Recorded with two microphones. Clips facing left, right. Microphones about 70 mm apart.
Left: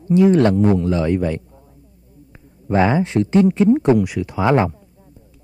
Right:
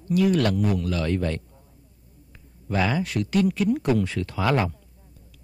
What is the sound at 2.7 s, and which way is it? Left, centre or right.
Speech, left.